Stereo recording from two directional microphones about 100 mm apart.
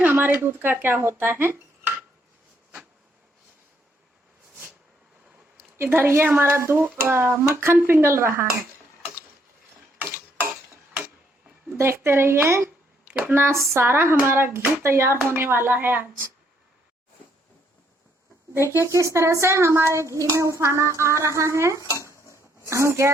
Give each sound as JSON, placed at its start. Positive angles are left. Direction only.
{"t": 0.0, "sound": "speech", "side_deg": -20}
{"t": 5.7, "sound": "speech", "side_deg": -20}
{"t": 10.0, "sound": "tick-tock", "side_deg": -25}
{"t": 11.8, "sound": "speech", "side_deg": -25}
{"t": 18.5, "sound": "speech", "side_deg": -25}
{"t": 21.9, "sound": "a sound", "side_deg": 30}
{"t": 22.7, "sound": "speech", "side_deg": -30}